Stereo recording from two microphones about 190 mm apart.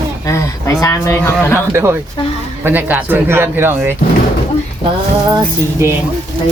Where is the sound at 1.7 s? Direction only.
15° right (ahead or behind).